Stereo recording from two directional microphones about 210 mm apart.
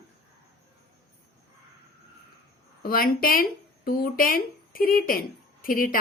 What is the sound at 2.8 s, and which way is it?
A woman's voice, 45° left (ahead or behind).